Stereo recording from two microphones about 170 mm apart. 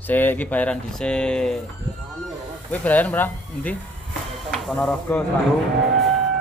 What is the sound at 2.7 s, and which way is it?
Speech, 10° left (ahead or behind).